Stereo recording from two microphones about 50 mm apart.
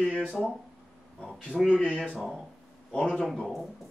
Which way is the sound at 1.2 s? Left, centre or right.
Centre.